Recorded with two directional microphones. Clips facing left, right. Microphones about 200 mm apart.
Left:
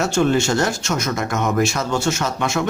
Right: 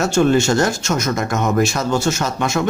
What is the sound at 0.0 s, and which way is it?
Speech, 45° right (ahead or behind).